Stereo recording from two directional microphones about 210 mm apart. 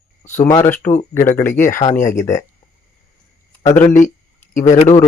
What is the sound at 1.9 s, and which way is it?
Speech, 35° left (ahead or behind).